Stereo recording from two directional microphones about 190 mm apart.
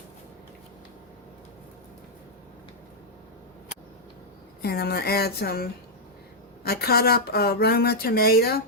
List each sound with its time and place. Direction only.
4.6 s speech: 55° left (ahead or behind)
6.7 s speech: 55° left (ahead or behind)